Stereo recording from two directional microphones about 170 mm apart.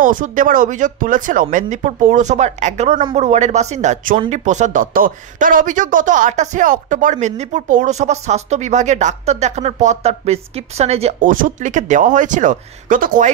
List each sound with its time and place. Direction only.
0.0 s speech: 50° right (ahead or behind)
11.1 s speech: 50° right (ahead or behind)